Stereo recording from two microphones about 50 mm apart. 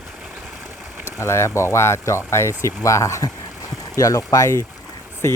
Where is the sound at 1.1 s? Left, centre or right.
Left.